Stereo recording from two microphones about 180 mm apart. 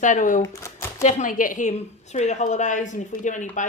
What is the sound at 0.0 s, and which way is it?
Speech, 45° left (ahead or behind).